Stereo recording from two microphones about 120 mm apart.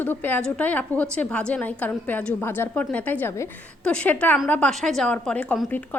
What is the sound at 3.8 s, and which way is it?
Speech, 10° left (ahead or behind).